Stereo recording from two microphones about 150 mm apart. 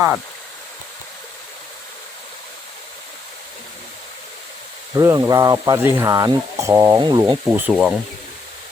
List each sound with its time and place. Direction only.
4.9 s speech: 20° right (ahead or behind)
7.4 s speech: 10° right (ahead or behind)